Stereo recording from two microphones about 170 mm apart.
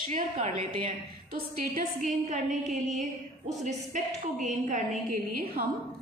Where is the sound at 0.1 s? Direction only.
50° right (ahead or behind).